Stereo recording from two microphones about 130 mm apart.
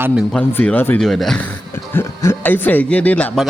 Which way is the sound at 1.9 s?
15° left (ahead or behind).